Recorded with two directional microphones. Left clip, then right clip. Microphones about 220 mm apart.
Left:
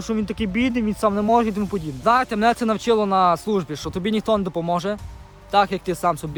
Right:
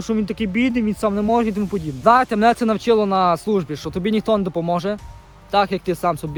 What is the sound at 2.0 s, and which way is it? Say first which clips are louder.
Speech: right 4 dB; centre (ahead or behind).